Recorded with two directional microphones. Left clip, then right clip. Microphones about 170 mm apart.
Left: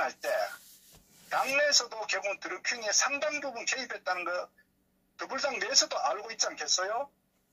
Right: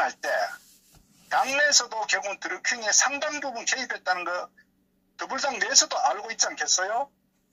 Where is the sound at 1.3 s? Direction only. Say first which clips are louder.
Right 5 dB; 25° right (ahead or behind).